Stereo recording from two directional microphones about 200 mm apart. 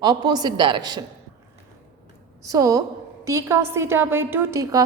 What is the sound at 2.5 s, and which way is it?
A woman's voice, 15° right (ahead or behind).